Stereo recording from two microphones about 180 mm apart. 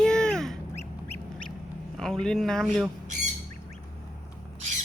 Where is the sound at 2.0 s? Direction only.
5° left (ahead or behind).